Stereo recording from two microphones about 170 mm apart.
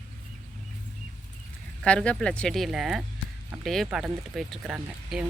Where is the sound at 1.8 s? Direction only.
5° left (ahead or behind).